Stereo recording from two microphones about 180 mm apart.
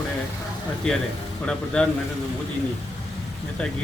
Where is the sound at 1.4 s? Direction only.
5° left (ahead or behind).